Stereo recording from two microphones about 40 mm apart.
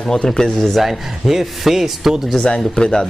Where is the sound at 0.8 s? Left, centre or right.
Centre.